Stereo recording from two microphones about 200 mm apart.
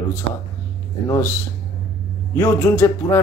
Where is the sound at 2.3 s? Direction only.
15° left (ahead or behind).